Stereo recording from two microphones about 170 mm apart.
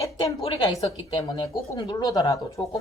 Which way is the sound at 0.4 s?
35° left (ahead or behind).